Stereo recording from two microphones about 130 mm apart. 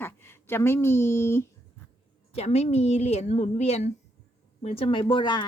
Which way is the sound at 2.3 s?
55° left (ahead or behind).